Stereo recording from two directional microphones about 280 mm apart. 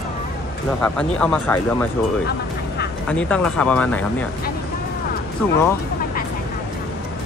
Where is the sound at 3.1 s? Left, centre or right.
Centre.